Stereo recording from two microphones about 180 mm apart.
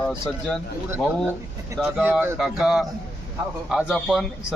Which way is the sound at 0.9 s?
10° right (ahead or behind).